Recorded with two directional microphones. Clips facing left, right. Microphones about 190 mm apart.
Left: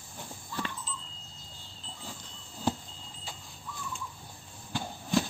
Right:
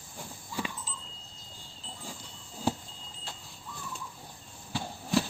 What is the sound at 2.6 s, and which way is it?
Vehicle, 10° right (ahead or behind).